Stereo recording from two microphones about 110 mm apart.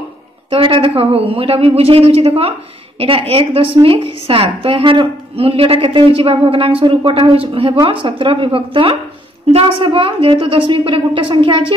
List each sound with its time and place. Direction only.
0.5 s a woman's voice: 55° right (ahead or behind)